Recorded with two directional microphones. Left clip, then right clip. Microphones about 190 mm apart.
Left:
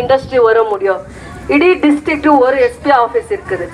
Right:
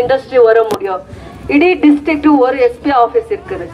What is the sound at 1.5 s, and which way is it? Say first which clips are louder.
Speech: even; 35° right (ahead or behind).